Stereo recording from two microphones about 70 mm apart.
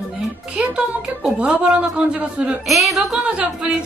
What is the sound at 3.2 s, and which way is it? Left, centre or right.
Speech, centre.